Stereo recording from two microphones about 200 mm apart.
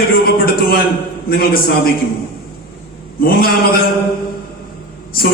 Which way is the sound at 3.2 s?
50° left (ahead or behind).